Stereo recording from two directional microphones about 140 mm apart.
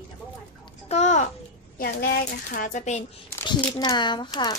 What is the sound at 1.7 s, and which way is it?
Speech, 90° left.